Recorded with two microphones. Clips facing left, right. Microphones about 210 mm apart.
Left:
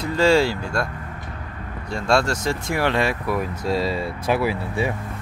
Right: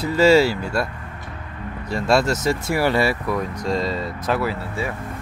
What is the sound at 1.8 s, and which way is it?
Speech, 5° right (ahead or behind).